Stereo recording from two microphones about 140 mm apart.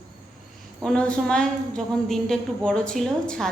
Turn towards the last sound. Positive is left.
turn(degrees=5)  # may be behind; listen again after turning